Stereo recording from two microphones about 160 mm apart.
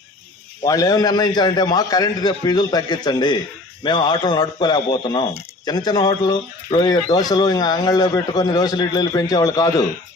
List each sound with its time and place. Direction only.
0.6 s speech: 20° left (ahead or behind)